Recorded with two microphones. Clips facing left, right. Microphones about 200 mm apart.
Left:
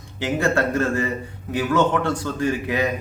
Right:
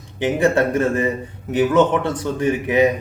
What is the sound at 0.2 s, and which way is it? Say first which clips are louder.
A man's voice: right 4 dB; 20° right (ahead or behind).